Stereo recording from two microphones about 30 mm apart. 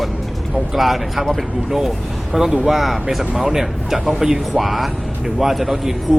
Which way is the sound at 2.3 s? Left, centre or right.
Right.